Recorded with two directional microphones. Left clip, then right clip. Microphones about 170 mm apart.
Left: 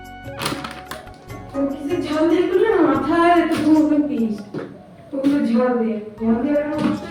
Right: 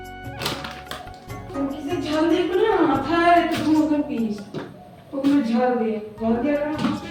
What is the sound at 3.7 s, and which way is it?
Speech, centre (ahead or behind).